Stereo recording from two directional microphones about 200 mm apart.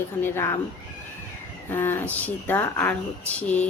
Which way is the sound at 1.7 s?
10° left (ahead or behind).